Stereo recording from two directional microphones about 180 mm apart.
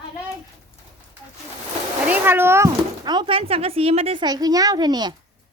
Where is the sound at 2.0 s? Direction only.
10° right (ahead or behind).